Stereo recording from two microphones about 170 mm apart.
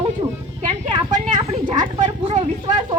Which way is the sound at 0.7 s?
30° right (ahead or behind).